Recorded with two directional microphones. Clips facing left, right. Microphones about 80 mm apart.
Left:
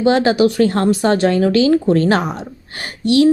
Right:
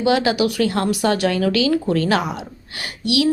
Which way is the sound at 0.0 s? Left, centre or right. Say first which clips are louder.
Left 4 dB; left.